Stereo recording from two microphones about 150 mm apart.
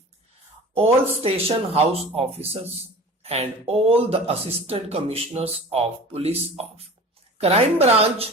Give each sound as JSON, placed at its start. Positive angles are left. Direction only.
{"t": 0.7, "sound": "speech", "side_deg": -40}